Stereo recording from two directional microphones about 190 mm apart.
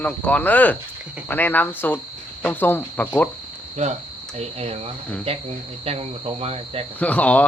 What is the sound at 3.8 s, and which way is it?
Speech, 35° right (ahead or behind).